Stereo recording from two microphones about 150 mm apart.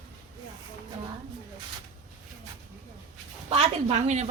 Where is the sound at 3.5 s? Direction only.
45° right (ahead or behind).